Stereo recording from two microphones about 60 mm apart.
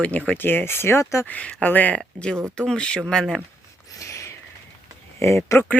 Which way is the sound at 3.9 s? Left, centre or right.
Left.